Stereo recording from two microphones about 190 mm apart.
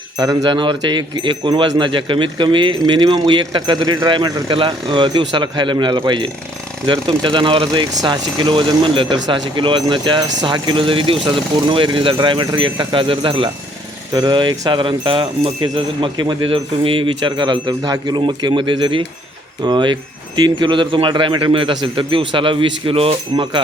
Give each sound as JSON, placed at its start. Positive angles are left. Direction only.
{"t": 0.2, "sound": "speech", "side_deg": -20}